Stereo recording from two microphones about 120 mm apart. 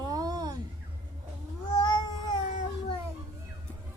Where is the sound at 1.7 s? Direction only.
35° left (ahead or behind).